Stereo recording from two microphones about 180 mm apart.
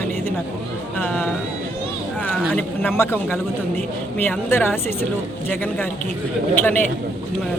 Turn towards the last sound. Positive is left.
turn(degrees=10)  # may be behind; listen again after turning